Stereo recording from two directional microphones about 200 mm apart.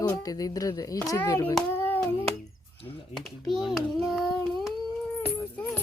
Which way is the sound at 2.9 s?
Centre (ahead or behind).